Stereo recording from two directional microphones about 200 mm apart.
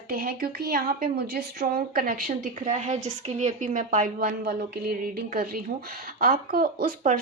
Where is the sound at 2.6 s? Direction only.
35° right (ahead or behind).